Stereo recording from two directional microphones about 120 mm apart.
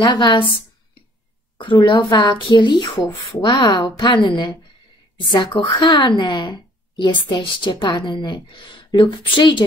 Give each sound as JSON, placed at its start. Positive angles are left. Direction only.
{"t": 0.0, "sound": "a woman's voice", "side_deg": 35}
{"t": 1.9, "sound": "a woman's voice", "side_deg": 40}